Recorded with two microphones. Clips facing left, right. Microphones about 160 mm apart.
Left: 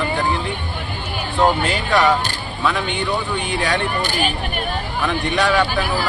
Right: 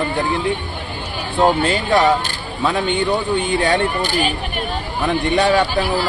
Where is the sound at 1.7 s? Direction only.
25° right (ahead or behind).